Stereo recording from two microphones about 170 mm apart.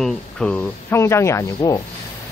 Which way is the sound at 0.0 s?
5° left (ahead or behind).